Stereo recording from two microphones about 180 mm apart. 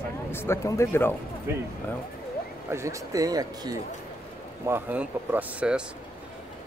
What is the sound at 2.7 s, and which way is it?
Speech, 15° right (ahead or behind).